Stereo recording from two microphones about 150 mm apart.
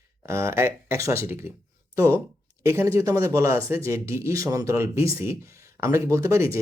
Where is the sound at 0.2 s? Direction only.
20° right (ahead or behind).